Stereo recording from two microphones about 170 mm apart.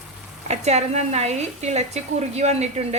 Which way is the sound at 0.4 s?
40° right (ahead or behind).